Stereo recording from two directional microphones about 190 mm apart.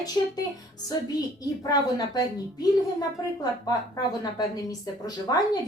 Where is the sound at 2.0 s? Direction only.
20° left (ahead or behind).